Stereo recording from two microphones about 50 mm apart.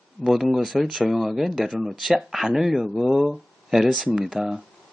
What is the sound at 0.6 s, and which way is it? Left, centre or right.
Speech, centre.